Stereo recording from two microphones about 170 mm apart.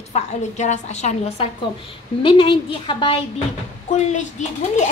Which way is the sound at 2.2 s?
30° left (ahead or behind).